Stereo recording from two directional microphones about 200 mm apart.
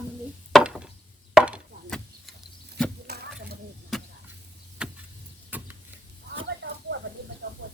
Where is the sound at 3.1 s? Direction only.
55° right (ahead or behind).